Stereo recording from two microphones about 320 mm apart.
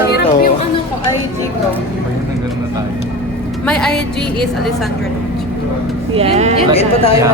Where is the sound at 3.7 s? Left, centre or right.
Centre.